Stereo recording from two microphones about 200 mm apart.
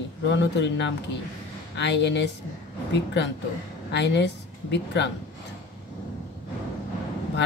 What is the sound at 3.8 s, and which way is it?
A woman's voice, 60° left (ahead or behind).